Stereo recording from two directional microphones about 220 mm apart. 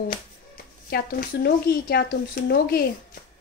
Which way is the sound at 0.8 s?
45° left (ahead or behind).